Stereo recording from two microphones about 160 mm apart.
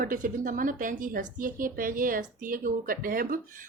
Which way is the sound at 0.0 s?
60° right (ahead or behind).